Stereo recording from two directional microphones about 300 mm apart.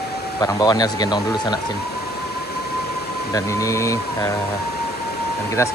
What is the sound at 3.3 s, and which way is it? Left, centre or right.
Speech, centre.